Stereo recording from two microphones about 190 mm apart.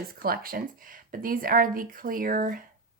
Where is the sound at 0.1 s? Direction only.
50° right (ahead or behind).